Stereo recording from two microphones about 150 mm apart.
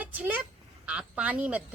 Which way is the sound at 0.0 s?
10° right (ahead or behind).